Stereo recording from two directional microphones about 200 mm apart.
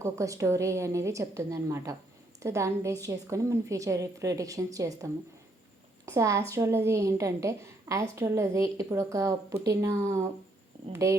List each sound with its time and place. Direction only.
0.0 s a woman's voice: 15° right (ahead or behind)